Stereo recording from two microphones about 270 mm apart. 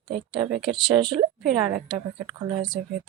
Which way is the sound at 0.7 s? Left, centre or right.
Centre.